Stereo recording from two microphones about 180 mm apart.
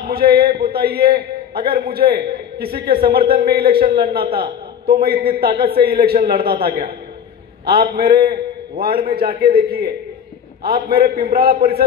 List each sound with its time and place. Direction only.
0.0 s a man's voice: 60° right (ahead or behind)
7.9 s a man's voice: 60° right (ahead or behind)